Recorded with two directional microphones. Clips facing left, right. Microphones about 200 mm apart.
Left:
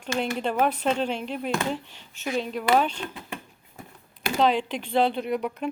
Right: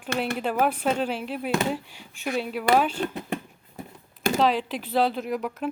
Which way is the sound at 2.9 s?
40° right (ahead or behind).